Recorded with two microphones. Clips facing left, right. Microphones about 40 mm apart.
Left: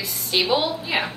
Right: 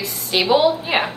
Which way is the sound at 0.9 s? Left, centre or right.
Right.